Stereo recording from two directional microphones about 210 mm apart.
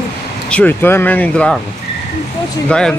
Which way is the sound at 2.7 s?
5° left (ahead or behind).